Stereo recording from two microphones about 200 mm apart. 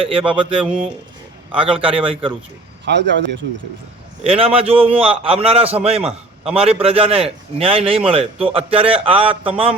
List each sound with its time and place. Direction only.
0.0 s a man's voice: 25° right (ahead or behind)
0.6 s speech: 5° right (ahead or behind)
1.5 s a man's voice: 25° right (ahead or behind)
2.8 s speech: 60° right (ahead or behind)
4.2 s a man's voice: 30° right (ahead or behind)